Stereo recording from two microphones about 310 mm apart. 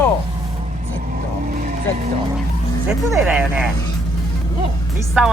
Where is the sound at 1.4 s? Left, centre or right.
Right.